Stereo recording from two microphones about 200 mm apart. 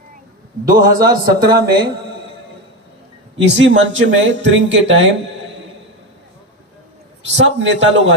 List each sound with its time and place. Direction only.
0.9 s speech: 45° right (ahead or behind)
3.4 s speech: 65° right (ahead or behind)
7.3 s a man's voice: 65° right (ahead or behind)